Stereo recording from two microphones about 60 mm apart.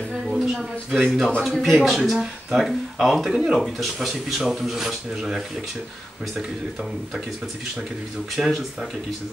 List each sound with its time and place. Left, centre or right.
0.6 s speech: centre
8.4 s speech: centre